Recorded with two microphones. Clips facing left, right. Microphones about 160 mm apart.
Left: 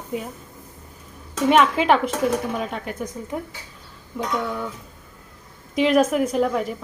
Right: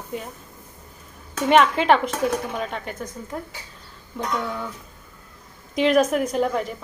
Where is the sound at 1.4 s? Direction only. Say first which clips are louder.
Even; centre (ahead or behind).